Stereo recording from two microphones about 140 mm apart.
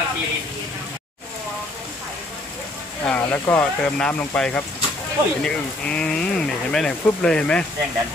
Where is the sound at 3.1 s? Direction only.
10° left (ahead or behind).